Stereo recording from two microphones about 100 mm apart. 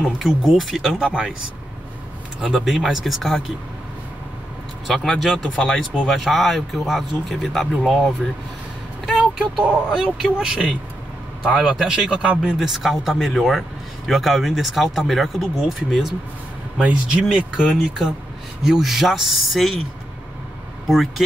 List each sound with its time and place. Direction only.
0.2 s speech: centre (ahead or behind)
2.4 s speech: 5° right (ahead or behind)
4.8 s speech: centre (ahead or behind)
9.1 s speech: 5° right (ahead or behind)
20.8 s speech: centre (ahead or behind)